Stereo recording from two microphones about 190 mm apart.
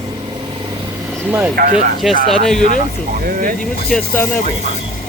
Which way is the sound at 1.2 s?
10° right (ahead or behind).